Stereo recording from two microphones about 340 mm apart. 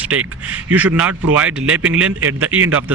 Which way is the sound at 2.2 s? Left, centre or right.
Right.